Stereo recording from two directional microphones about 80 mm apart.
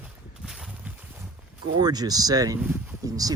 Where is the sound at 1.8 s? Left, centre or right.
Right.